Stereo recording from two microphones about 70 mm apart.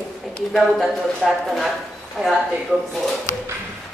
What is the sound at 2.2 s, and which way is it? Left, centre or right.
Speech, centre.